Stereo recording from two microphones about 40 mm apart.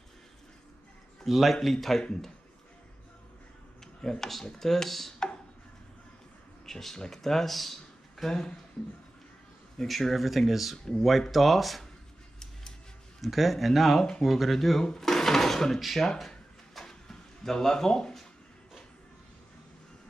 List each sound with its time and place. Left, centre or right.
1.2 s speech: centre
3.8 s speech: centre
6.6 s speech: centre
8.3 s speech: centre
9.8 s speech: centre
13.2 s speech: centre
14.8 s speech: centre
16.8 s a sound: centre